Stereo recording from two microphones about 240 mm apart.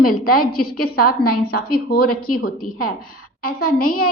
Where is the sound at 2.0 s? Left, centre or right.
Left.